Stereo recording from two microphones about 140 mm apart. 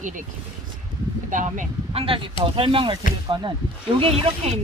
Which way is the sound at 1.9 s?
40° right (ahead or behind).